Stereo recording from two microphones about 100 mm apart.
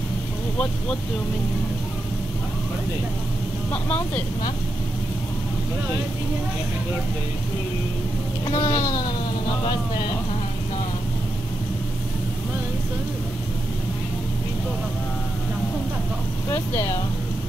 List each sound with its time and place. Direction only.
3.7 s speech: 15° left (ahead or behind)
8.5 s a sound: 40° left (ahead or behind)
16.4 s speech: 25° left (ahead or behind)